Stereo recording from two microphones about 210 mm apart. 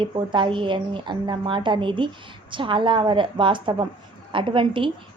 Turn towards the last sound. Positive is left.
turn(degrees=-25)  # may be behind; listen again after turning